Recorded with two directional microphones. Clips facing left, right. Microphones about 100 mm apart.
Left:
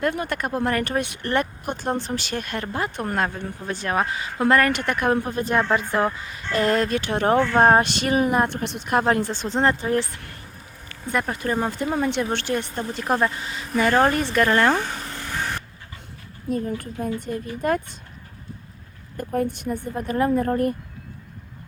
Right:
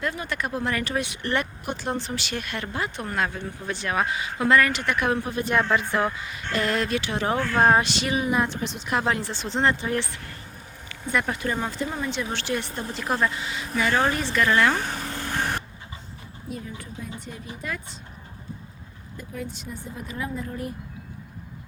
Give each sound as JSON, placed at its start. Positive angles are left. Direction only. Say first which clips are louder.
{"t": 0.0, "sound": "speech", "louder": "left 4 dB", "side_deg": 50}
{"t": 15.0, "sound": "vehicle", "louder": "right 1 dB", "side_deg": -30}
{"t": 16.5, "sound": "speech", "louder": "left 10 dB", "side_deg": 50}
{"t": 19.1, "sound": "speech", "louder": "left 11 dB", "side_deg": 55}